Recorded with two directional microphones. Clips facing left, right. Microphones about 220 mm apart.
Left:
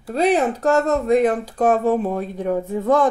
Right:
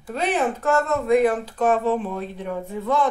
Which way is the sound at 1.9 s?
40° left (ahead or behind).